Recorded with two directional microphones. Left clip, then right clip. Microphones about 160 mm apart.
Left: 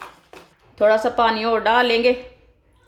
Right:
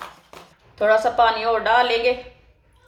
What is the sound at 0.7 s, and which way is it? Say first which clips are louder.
A woman's voice: left 1 dB; 50° left (ahead or behind).